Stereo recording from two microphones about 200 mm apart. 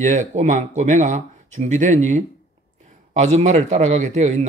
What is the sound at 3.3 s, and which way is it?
A man's voice, 35° right (ahead or behind).